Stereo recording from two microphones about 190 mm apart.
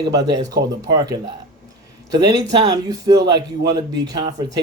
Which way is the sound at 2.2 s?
20° right (ahead or behind).